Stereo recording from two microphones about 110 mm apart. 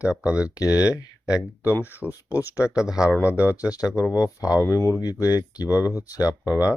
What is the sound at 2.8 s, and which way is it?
Speech, 5° right (ahead or behind).